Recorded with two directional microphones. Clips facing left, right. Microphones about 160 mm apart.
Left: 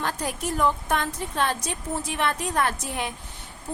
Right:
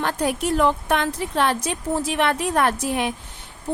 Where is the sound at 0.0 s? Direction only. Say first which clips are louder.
Right 6 dB; 65° right (ahead or behind).